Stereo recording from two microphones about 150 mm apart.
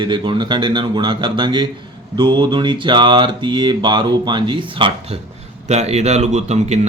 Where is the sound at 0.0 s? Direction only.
30° right (ahead or behind).